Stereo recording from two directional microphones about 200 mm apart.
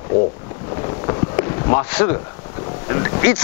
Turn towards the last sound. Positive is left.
turn(degrees=20)  # may be behind; listen again after turning